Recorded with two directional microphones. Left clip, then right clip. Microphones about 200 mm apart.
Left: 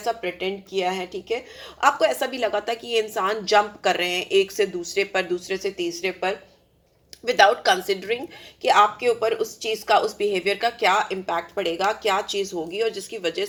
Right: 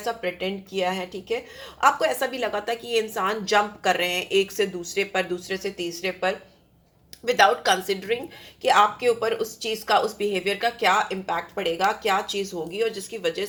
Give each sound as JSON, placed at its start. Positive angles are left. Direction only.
{"t": 0.0, "sound": "a woman's voice", "side_deg": 30}